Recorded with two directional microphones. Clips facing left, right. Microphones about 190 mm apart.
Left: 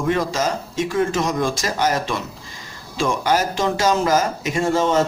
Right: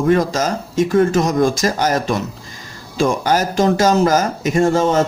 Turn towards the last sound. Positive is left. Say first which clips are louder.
# right 4 dB
turn(degrees=-45)  # may be behind; listen again after turning